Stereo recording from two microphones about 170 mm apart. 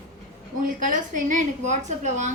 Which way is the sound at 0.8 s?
50° right (ahead or behind).